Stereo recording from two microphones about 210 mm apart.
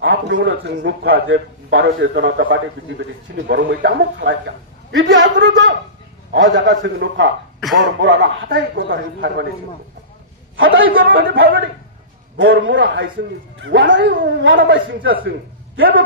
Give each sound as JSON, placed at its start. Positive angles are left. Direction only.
{"t": 0.0, "sound": "a man's voice", "side_deg": -55}
{"t": 4.9, "sound": "a man's voice", "side_deg": -65}
{"t": 10.5, "sound": "a sound", "side_deg": -70}
{"t": 11.1, "sound": "a man's voice", "side_deg": -45}